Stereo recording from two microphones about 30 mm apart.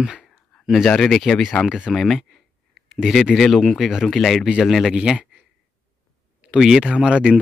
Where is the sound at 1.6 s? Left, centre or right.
Right.